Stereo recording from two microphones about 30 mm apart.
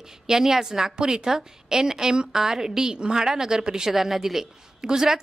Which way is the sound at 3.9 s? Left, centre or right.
Centre.